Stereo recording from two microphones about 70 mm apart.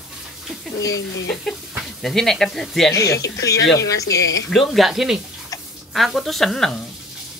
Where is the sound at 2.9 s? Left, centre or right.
Left.